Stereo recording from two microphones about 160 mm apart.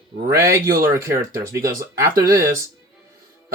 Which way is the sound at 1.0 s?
20° right (ahead or behind).